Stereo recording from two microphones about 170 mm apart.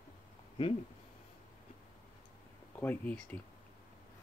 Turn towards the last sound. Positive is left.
turn(degrees=10)  # may be behind; listen again after turning